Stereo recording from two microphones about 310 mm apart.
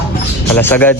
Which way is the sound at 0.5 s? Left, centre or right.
Centre.